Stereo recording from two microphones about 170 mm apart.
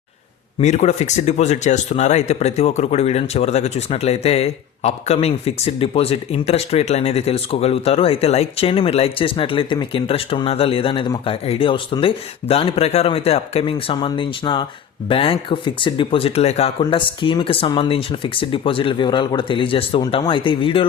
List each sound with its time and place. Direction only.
0.6 s speech: 40° left (ahead or behind)